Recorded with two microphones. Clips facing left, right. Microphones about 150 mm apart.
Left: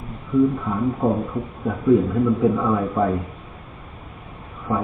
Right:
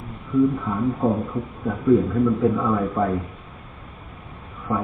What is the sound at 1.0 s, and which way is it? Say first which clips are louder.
Speech: left 1 dB; 10° left (ahead or behind).